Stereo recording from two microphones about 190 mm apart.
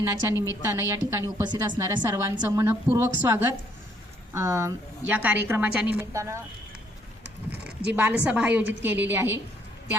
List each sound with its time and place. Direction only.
0.0 s a woman's voice: 15° right (ahead or behind)
2.0 s a woman's voice: 10° right (ahead or behind)
7.5 s a woman's voice: 10° right (ahead or behind)